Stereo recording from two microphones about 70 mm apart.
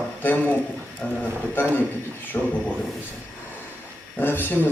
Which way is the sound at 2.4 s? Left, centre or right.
Centre.